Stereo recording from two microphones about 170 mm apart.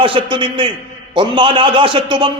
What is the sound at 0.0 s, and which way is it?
A man's voice, 30° right (ahead or behind).